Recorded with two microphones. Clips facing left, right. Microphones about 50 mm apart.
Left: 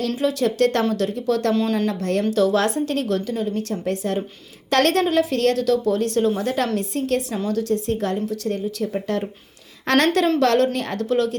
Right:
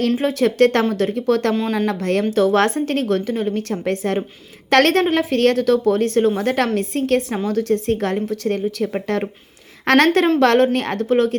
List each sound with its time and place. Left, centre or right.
0.2 s a woman's voice: right
1.1 s a woman's voice: right